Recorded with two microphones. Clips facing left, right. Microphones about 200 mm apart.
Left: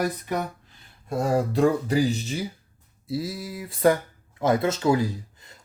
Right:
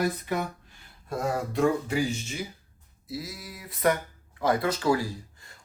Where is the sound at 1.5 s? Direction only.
35° left (ahead or behind).